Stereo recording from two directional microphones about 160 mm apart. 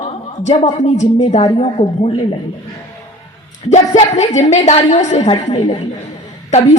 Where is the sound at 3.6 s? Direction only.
35° left (ahead or behind).